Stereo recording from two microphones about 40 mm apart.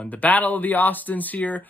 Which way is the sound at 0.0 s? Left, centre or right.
Left.